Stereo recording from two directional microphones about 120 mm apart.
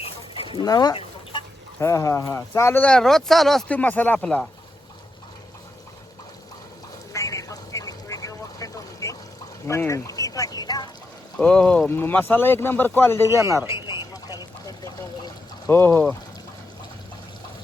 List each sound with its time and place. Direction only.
0.6 s speech: 35° left (ahead or behind)
0.9 s chicken: 40° left (ahead or behind)
1.8 s speech: 25° left (ahead or behind)
2.8 s speech: 5° left (ahead or behind)
7.1 s vehicle: 25° left (ahead or behind)
9.6 s speech: 25° left (ahead or behind)
11.3 s speech: 5° left (ahead or behind)
13.3 s speech: 25° right (ahead or behind)
13.8 s a sound: 35° left (ahead or behind)
15.7 s speech: 20° left (ahead or behind)